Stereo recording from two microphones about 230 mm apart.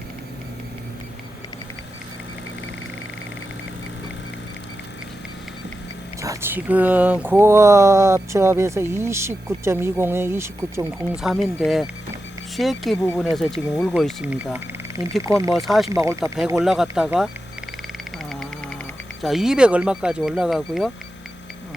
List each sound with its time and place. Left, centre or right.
6.2 s speech: centre
15.5 s speech: centre
19.2 s speech: centre